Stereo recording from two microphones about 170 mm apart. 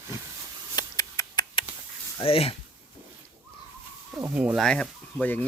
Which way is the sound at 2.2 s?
35° left (ahead or behind).